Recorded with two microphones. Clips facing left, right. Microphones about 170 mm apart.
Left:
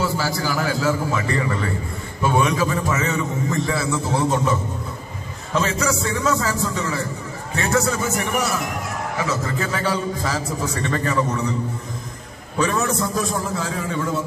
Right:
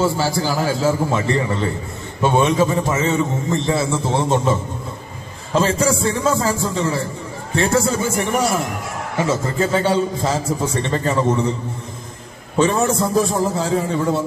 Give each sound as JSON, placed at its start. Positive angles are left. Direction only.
{"t": 0.0, "sound": "a man's voice", "side_deg": -30}
{"t": 12.5, "sound": "a man's voice", "side_deg": -25}